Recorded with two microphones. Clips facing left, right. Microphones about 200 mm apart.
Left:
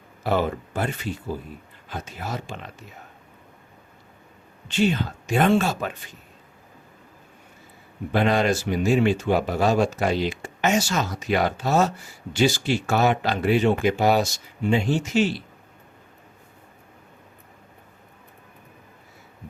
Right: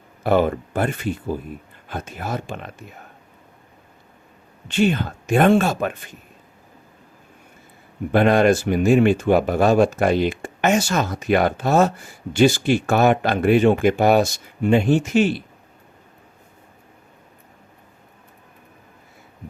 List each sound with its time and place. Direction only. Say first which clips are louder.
0.2 s speech: right 5 dB; 55° right (ahead or behind)
4.7 s speech: right 3 dB; 55° right (ahead or behind)
8.1 s speech: right 6 dB; 55° right (ahead or behind)